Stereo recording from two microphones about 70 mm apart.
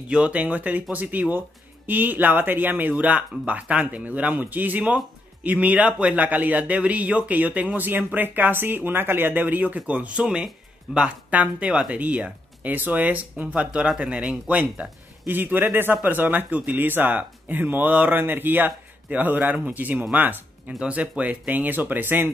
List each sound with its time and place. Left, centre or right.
0.1 s speech: centre
11.1 s speech: right